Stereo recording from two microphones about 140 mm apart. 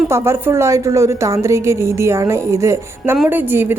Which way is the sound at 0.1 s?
20° right (ahead or behind).